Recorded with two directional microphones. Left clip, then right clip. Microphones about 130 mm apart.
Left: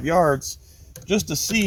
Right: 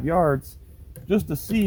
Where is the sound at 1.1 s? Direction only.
15° left (ahead or behind).